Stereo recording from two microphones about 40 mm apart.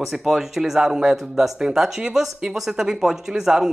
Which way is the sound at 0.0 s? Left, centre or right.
Centre.